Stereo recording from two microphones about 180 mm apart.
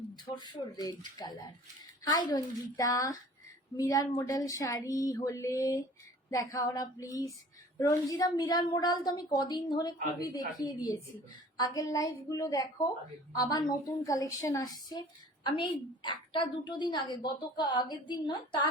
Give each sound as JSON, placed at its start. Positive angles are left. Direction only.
{"t": 0.3, "sound": "speech", "side_deg": 25}